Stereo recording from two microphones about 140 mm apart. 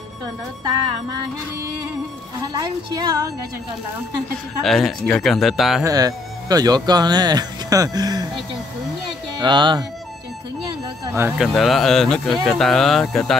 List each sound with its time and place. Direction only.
2.4 s speech: 25° right (ahead or behind)
4.6 s speech: centre (ahead or behind)
5.9 s speech: 25° right (ahead or behind)
9.4 s speech: 35° right (ahead or behind)
11.1 s speech: 15° right (ahead or behind)
11.3 s speech: centre (ahead or behind)